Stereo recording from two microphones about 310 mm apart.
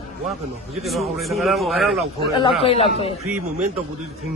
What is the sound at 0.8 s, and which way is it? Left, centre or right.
A man's voice, centre.